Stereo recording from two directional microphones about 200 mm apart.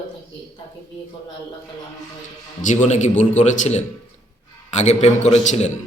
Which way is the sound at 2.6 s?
35° left (ahead or behind).